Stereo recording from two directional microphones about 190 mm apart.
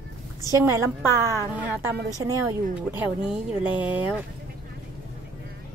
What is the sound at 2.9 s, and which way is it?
A woman's voice, 5° right (ahead or behind).